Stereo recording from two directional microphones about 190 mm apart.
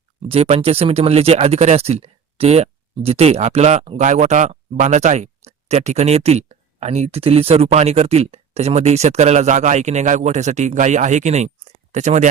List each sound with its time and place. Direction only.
0.2 s speech: 30° right (ahead or behind)